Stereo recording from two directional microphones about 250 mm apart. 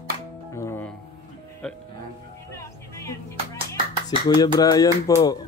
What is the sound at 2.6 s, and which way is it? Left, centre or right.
Music, centre.